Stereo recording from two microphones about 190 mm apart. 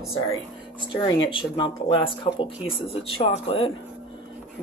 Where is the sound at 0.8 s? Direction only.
25° left (ahead or behind).